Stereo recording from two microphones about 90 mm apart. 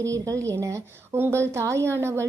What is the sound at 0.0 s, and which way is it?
A woman's voice, 35° right (ahead or behind).